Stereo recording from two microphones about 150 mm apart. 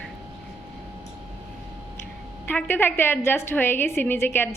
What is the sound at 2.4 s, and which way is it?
A woman's voice, 15° left (ahead or behind).